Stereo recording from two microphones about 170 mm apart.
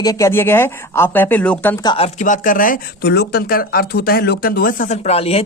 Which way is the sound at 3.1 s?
70° left (ahead or behind).